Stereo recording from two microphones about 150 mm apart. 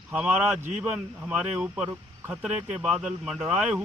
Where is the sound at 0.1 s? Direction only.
5° right (ahead or behind).